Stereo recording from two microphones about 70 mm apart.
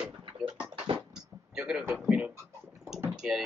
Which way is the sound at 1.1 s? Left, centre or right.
Centre.